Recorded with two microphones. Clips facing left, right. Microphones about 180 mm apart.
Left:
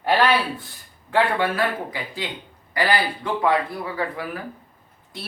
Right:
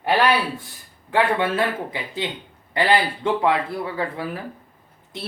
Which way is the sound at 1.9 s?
25° right (ahead or behind).